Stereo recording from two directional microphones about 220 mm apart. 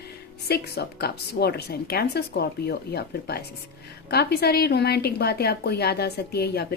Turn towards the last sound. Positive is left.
turn(degrees=45)  # may be behind; listen again after turning